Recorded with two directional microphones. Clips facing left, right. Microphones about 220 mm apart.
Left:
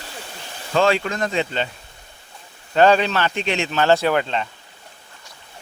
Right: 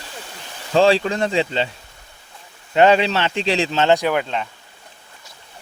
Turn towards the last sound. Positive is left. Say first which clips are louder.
# left 1 dB
turn(degrees=-10)  # may be behind; listen again after turning